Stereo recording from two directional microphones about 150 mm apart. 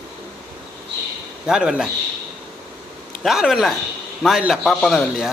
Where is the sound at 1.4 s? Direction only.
5° right (ahead or behind).